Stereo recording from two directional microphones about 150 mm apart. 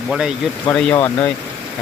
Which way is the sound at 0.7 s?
5° left (ahead or behind).